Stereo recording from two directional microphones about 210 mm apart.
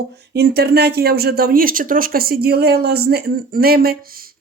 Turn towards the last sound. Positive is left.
turn(degrees=-45)  # may be behind; listen again after turning